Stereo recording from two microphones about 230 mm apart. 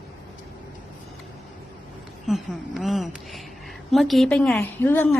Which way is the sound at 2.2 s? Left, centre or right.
Centre.